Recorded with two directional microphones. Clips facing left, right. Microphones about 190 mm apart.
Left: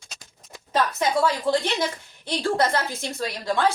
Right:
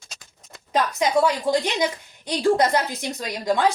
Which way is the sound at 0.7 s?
15° right (ahead or behind).